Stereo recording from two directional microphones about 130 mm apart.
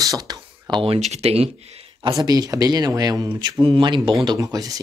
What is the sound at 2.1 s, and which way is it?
Speech, 30° right (ahead or behind).